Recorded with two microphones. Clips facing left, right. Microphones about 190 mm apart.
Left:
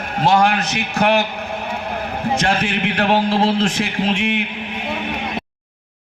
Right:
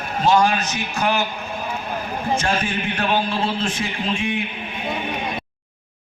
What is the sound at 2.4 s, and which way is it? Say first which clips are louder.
A man's voice: left 4 dB; 75° left (ahead or behind).